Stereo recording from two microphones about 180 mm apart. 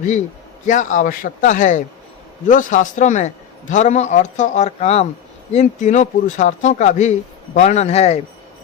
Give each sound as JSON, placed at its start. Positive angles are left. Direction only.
{"t": 0.6, "sound": "a man's voice", "side_deg": 45}